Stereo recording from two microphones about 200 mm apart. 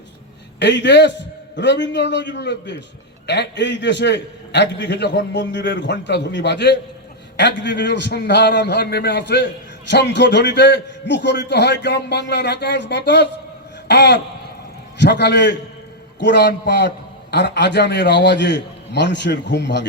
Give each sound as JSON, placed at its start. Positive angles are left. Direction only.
{"t": 0.6, "sound": "a man's voice", "side_deg": 60}
{"t": 13.8, "sound": "a sound", "side_deg": 55}
{"t": 14.9, "sound": "a man's voice", "side_deg": 60}